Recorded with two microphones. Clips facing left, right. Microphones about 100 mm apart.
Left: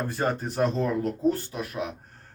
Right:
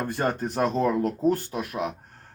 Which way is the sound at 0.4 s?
55° right (ahead or behind).